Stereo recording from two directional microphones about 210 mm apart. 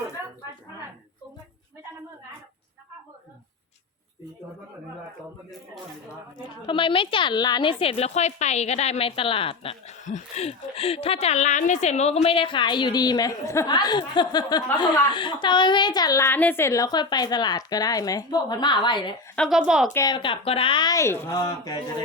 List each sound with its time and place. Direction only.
6.5 s a woman's voice: 25° left (ahead or behind)
19.4 s a woman's voice: centre (ahead or behind)
19.9 s a woman's voice: 15° left (ahead or behind)